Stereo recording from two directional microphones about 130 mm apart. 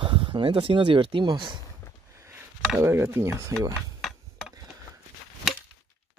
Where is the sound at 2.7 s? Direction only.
20° right (ahead or behind).